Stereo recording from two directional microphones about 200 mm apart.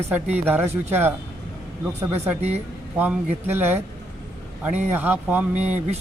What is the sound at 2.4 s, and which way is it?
Speech, 30° right (ahead or behind).